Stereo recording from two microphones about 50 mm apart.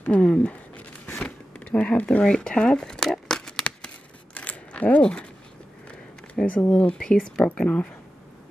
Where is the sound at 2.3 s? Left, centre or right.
Centre.